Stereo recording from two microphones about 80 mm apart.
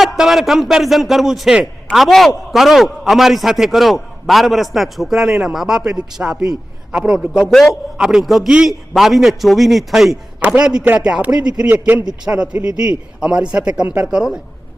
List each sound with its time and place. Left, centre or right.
0.0 s speech: centre
10.4 s a man's voice: centre
11.7 s a man's voice: right
12.2 s a man's voice: centre